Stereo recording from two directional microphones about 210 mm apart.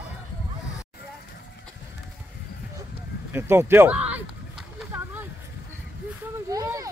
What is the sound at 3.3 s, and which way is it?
Speech, 10° right (ahead or behind).